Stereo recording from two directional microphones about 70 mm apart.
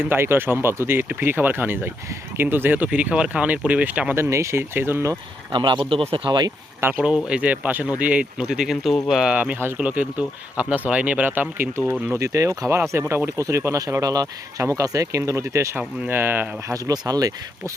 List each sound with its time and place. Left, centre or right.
0.0 s speech: right
4.1 s speech: right
5.5 s speech: right
6.8 s speech: right
7.3 s speech: centre
8.4 s speech: centre
9.7 s speech: centre
12.2 s speech: right
14.0 s speech: right
14.6 s speech: right
16.0 s speech: right
16.7 s speech: right